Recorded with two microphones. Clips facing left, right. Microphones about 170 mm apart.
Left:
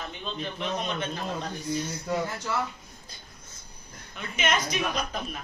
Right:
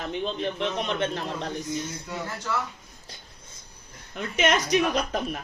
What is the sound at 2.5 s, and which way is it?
Speech, 20° left (ahead or behind).